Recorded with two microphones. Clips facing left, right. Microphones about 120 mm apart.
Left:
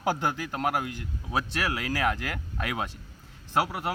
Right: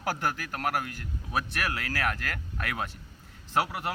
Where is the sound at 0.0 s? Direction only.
20° left (ahead or behind).